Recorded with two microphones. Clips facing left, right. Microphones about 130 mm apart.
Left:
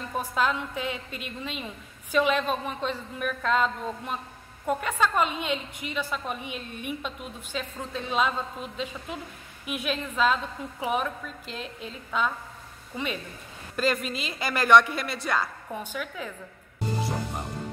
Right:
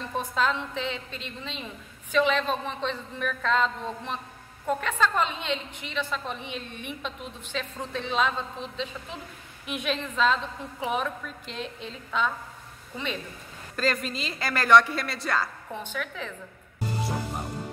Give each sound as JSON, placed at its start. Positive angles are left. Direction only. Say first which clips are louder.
{"t": 0.1, "sound": "a woman's voice", "louder": "even", "side_deg": 10}